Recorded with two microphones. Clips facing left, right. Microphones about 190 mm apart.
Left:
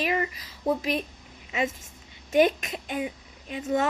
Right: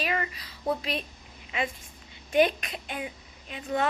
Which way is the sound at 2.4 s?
20° left (ahead or behind).